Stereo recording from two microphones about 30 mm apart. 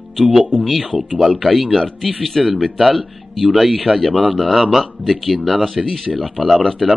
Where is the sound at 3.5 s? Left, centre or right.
Centre.